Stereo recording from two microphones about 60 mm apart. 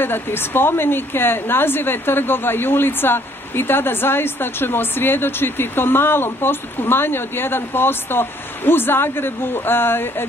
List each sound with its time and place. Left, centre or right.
0.0 s a woman's voice: left